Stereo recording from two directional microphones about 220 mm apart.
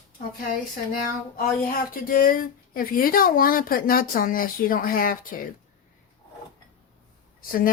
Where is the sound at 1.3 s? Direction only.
40° left (ahead or behind).